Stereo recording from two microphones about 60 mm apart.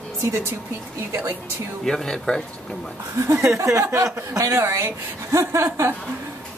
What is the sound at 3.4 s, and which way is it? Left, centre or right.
A woman's voice, right.